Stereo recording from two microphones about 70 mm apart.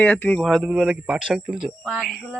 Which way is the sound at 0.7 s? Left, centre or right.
Centre.